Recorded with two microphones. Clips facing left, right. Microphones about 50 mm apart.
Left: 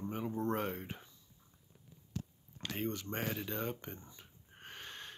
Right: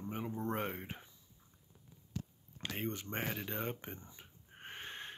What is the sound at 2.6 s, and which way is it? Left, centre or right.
Speech, centre.